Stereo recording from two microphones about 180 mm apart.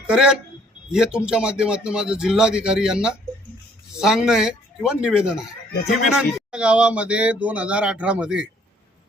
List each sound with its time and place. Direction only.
0.1 s a man's voice: 5° right (ahead or behind)